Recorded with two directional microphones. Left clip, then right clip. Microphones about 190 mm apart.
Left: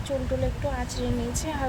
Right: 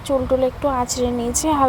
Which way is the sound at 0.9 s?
30° right (ahead or behind).